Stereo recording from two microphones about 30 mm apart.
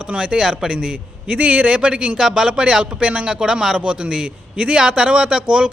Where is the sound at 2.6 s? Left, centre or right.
Right.